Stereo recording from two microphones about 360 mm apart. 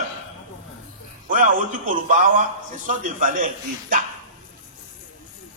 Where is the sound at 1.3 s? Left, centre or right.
Right.